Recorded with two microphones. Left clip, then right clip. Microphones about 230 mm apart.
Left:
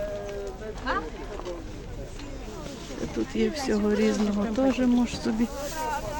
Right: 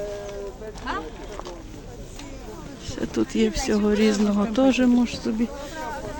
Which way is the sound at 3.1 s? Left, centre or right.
Right.